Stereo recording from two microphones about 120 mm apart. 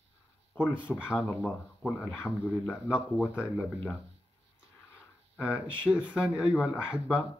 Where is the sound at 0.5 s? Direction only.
15° left (ahead or behind).